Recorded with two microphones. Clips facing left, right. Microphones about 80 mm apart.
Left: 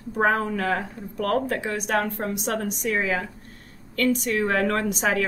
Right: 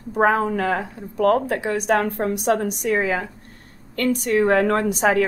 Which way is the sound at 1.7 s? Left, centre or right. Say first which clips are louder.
Right 7 dB; right.